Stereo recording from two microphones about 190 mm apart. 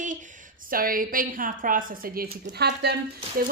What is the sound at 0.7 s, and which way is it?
Speech, 50° right (ahead or behind).